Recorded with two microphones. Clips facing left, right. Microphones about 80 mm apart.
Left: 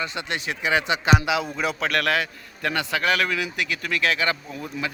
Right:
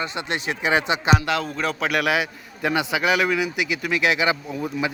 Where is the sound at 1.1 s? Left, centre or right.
Centre.